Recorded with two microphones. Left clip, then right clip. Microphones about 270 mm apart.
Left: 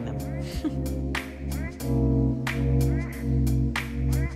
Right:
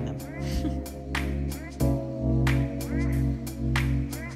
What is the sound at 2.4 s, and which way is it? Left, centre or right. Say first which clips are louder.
Music: left 1 dB; centre.